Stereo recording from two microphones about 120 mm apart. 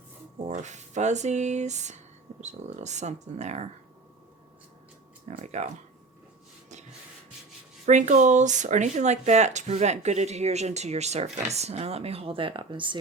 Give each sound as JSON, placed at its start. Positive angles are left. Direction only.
{"t": 0.4, "sound": "speech", "side_deg": -75}
{"t": 5.4, "sound": "speech", "side_deg": -75}
{"t": 7.9, "sound": "speech", "side_deg": -85}